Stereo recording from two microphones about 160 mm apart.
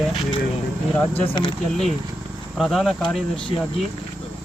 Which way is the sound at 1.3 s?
35° left (ahead or behind).